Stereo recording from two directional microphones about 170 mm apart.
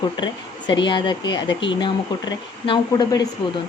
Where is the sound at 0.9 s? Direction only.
30° left (ahead or behind).